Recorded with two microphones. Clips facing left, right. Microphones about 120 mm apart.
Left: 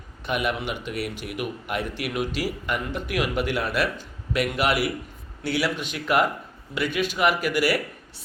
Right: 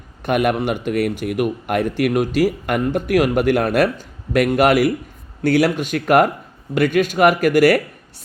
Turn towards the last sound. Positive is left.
turn(degrees=-50)  # may be behind; listen again after turning